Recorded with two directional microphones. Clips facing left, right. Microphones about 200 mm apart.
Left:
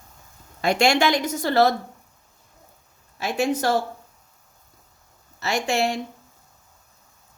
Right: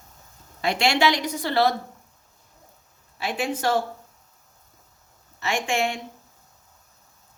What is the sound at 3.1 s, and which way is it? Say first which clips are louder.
Speech: left 4 dB; 45° left (ahead or behind).